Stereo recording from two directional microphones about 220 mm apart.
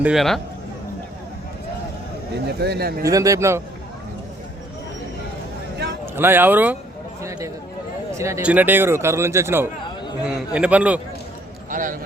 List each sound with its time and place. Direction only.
0.0 s a man's voice: centre (ahead or behind)
2.5 s speech: 50° right (ahead or behind)
3.0 s speech: 15° right (ahead or behind)
6.1 s speech: 10° right (ahead or behind)
7.2 s a sound: 15° right (ahead or behind)
8.1 s speech: 15° right (ahead or behind)
11.7 s speech: 40° right (ahead or behind)